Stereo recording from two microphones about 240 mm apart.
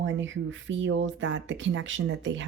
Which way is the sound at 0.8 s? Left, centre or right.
Right.